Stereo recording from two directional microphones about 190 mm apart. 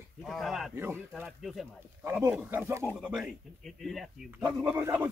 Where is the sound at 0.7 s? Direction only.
10° right (ahead or behind).